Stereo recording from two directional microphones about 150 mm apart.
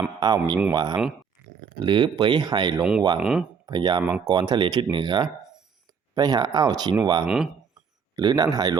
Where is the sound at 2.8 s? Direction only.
5° right (ahead or behind).